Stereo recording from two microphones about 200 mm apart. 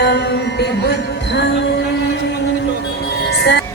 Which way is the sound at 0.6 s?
60° left (ahead or behind).